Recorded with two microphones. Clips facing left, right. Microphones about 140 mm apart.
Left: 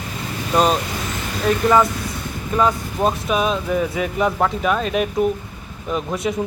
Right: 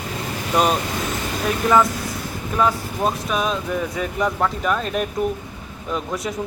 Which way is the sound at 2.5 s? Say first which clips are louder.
Left 2 dB; centre (ahead or behind).